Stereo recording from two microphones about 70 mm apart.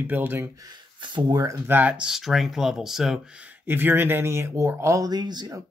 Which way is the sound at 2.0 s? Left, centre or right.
Centre.